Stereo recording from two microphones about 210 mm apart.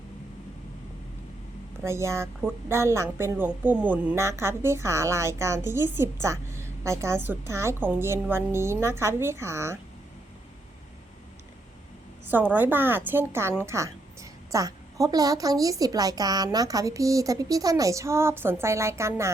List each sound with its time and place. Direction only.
1.8 s a woman's voice: 15° right (ahead or behind)
12.3 s a woman's voice: 10° right (ahead or behind)